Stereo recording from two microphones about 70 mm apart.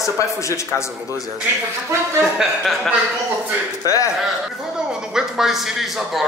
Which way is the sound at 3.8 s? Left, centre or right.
Left.